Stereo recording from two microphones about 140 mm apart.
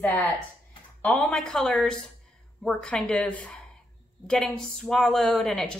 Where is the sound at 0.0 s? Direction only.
15° left (ahead or behind).